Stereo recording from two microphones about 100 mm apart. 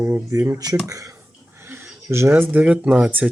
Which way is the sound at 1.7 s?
25° right (ahead or behind).